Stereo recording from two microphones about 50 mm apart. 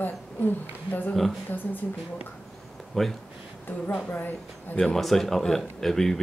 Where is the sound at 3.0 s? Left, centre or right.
Centre.